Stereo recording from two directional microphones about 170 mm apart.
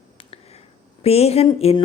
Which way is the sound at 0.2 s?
35° left (ahead or behind).